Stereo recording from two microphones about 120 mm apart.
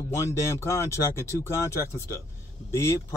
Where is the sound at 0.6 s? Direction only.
25° left (ahead or behind).